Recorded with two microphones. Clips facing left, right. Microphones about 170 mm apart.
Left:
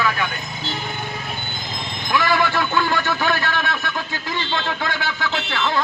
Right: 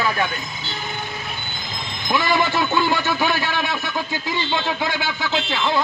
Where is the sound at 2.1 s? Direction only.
20° right (ahead or behind).